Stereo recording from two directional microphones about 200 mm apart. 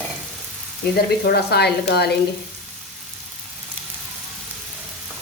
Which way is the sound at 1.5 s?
55° left (ahead or behind).